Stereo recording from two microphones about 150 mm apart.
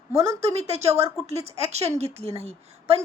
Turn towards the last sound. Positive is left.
turn(degrees=-40)  # may be behind; listen again after turning